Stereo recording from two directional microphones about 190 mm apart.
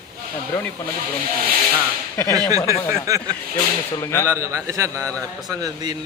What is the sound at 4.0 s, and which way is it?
Speech, 15° left (ahead or behind).